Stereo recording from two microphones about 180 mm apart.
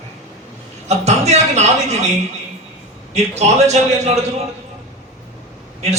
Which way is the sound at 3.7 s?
35° right (ahead or behind).